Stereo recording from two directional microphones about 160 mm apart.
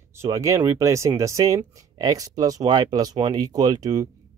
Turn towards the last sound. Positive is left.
turn(degrees=-25)  # may be behind; listen again after turning